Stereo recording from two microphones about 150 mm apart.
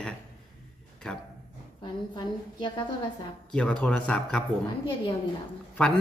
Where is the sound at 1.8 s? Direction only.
30° left (ahead or behind).